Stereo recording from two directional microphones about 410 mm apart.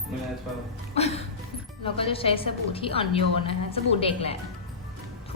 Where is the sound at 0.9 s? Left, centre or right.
Centre.